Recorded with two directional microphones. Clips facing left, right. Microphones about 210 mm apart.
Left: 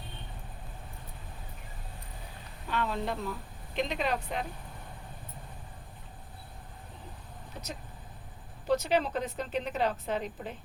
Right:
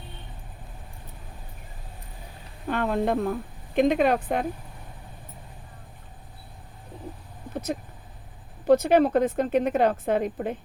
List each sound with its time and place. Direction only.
2.6 s a woman's voice: 50° right (ahead or behind)
7.5 s vehicle: 55° right (ahead or behind)
8.6 s a woman's voice: 55° right (ahead or behind)